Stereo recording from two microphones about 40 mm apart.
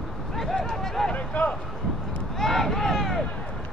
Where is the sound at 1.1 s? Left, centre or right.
Left.